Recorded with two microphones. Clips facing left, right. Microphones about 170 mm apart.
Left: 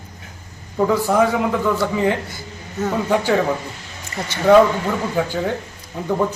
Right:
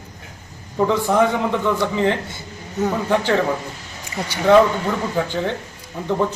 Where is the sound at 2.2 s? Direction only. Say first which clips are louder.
Even; 25° right (ahead or behind).